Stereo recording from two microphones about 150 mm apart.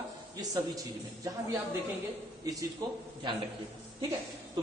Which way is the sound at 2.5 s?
25° right (ahead or behind).